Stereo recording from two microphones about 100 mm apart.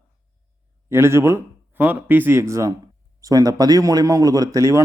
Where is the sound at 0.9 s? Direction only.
25° right (ahead or behind).